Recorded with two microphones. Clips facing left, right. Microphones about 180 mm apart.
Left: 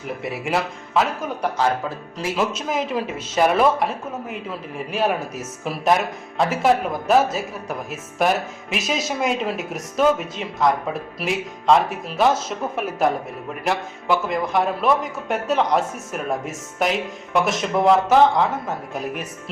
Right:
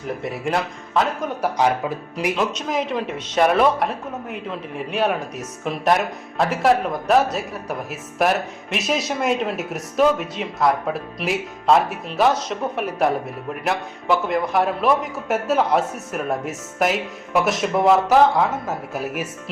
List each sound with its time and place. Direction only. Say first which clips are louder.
0.2 s speech: left 1 dB; 5° left (ahead or behind)
1.4 s speech: right 2 dB; 15° right (ahead or behind)
2.3 s speech: left 1 dB; 5° left (ahead or behind)